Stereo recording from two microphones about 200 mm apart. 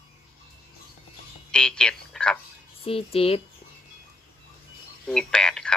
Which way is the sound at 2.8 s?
30° left (ahead or behind).